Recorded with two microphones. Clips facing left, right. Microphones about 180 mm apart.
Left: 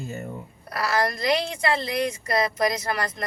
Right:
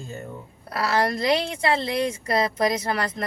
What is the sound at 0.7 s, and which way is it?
A woman's voice, 25° right (ahead or behind).